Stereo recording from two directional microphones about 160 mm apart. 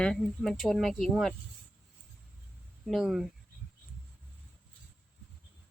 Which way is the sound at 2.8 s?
Centre (ahead or behind).